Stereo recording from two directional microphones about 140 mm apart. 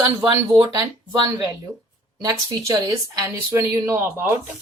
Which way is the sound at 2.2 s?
25° right (ahead or behind).